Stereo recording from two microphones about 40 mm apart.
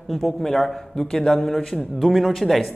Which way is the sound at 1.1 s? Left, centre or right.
Left.